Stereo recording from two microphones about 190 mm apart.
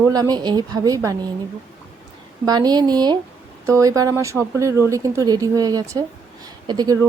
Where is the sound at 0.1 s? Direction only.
20° right (ahead or behind).